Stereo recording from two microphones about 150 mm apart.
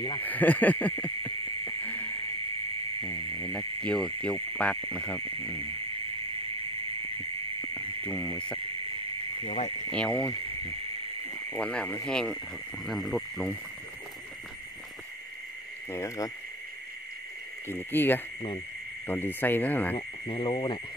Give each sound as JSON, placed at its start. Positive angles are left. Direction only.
{"t": 0.2, "sound": "a sound", "side_deg": 10}
{"t": 3.9, "sound": "speech", "side_deg": 5}
{"t": 8.0, "sound": "speech", "side_deg": 20}
{"t": 9.8, "sound": "speech", "side_deg": 10}
{"t": 11.3, "sound": "speech", "side_deg": 10}
{"t": 15.9, "sound": "speech", "side_deg": 20}
{"t": 17.6, "sound": "speech", "side_deg": 15}
{"t": 20.0, "sound": "speech", "side_deg": 35}